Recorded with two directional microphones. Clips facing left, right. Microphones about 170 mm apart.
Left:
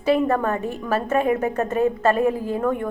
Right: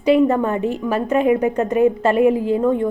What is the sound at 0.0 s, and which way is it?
A woman's voice, 15° right (ahead or behind).